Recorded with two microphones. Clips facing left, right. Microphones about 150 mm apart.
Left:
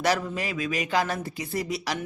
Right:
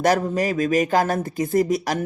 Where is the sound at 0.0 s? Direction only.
45° right (ahead or behind).